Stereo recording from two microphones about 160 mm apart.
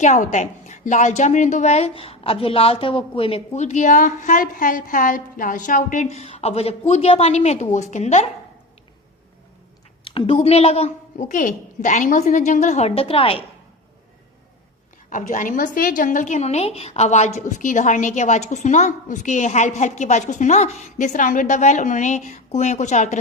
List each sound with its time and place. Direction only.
0.0 s a woman's voice: 50° left (ahead or behind)
10.0 s a woman's voice: 35° left (ahead or behind)
15.1 s a woman's voice: 50° left (ahead or behind)